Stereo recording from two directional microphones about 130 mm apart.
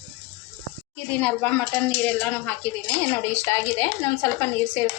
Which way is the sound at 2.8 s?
20° left (ahead or behind).